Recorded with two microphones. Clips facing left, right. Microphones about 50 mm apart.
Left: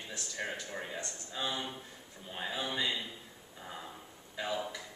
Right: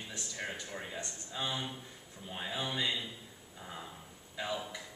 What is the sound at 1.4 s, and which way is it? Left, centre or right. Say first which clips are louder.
A man's voice: left 1 dB; centre.